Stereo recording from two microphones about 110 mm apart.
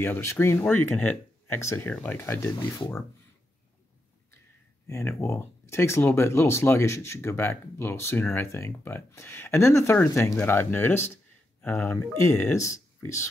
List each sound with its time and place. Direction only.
0.0 s speech: 20° left (ahead or behind)
4.8 s speech: 25° left (ahead or behind)